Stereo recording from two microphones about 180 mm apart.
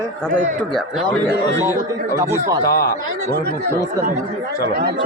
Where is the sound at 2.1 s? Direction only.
15° right (ahead or behind).